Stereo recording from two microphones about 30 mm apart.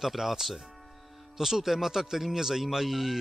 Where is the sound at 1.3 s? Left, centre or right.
Centre.